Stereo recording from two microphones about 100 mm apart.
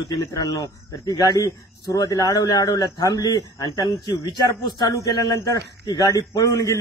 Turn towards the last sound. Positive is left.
turn(degrees=35)  # may be behind; listen again after turning